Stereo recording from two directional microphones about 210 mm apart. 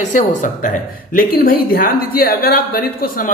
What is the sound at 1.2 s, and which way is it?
Speech, 45° left (ahead or behind).